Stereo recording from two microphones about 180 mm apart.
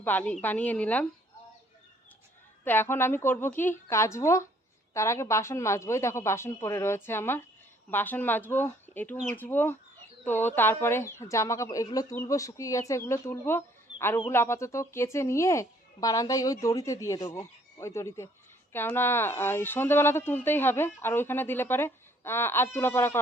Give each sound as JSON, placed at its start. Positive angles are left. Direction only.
{"t": 0.0, "sound": "speech", "side_deg": 10}
{"t": 2.6, "sound": "speech", "side_deg": 10}